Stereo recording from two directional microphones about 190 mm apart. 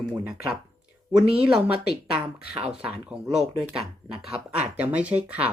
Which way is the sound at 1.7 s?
55° left (ahead or behind).